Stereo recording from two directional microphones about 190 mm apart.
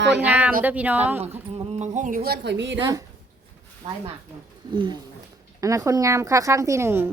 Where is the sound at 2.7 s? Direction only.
20° right (ahead or behind).